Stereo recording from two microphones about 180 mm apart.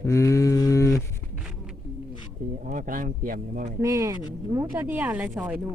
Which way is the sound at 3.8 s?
15° right (ahead or behind).